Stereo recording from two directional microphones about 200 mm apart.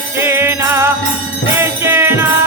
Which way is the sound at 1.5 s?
10° right (ahead or behind).